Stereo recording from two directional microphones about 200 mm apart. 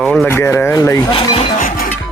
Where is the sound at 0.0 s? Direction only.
5° left (ahead or behind); by 1.5 s 25° left (ahead or behind).